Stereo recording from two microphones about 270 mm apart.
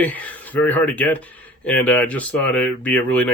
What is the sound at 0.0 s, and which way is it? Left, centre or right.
Speech, centre.